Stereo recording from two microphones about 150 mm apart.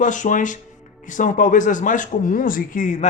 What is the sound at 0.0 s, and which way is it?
A man's voice, 55° left (ahead or behind).